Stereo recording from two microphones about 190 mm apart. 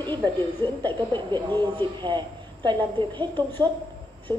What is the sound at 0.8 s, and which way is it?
A woman's voice, 25° right (ahead or behind).